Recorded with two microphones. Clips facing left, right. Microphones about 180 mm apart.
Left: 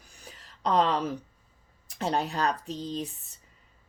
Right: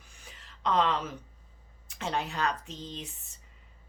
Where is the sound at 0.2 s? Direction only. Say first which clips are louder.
Left 3 dB; 40° left (ahead or behind).